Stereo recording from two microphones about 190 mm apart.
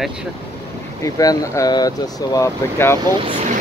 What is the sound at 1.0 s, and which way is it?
Speech, 20° left (ahead or behind).